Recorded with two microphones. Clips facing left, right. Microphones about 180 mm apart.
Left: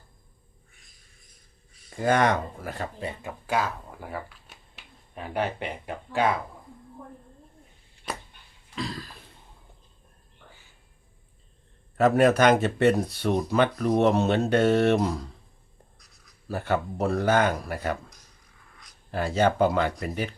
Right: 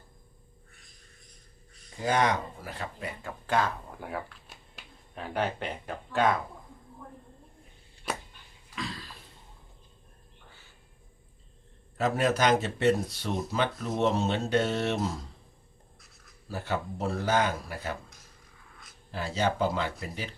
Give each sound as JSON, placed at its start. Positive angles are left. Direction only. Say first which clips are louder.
{"t": 2.0, "sound": "speech", "louder": "left 4 dB", "side_deg": 50}
{"t": 3.0, "sound": "speech", "louder": "left 4 dB", "side_deg": 20}
{"t": 8.1, "sound": "a sound", "louder": "even", "side_deg": -5}
{"t": 8.7, "sound": "cough", "louder": "left 4 dB", "side_deg": 35}
{"t": 11.9, "sound": "speech", "louder": "left 7 dB", "side_deg": 60}
{"t": 16.5, "sound": "speech", "louder": "left 5 dB", "side_deg": 55}
{"t": 19.1, "sound": "speech", "louder": "left 6 dB", "side_deg": 55}